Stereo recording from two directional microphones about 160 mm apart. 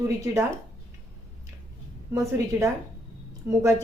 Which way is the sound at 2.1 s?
20° right (ahead or behind).